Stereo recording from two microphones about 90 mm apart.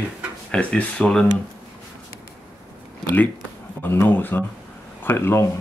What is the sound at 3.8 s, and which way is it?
Speech, 25° left (ahead or behind).